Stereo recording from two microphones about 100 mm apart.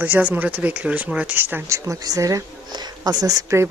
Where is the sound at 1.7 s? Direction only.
35° right (ahead or behind).